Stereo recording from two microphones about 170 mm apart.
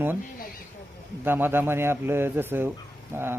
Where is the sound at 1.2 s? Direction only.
10° right (ahead or behind).